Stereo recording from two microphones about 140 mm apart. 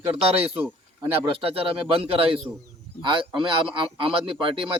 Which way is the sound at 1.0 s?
40° right (ahead or behind).